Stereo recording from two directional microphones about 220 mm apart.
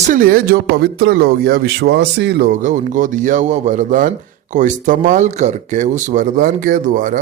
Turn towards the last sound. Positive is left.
turn(degrees=-35)  # may be behind; listen again after turning